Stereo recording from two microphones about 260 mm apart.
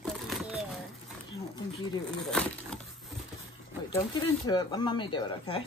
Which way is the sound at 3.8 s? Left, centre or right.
Centre.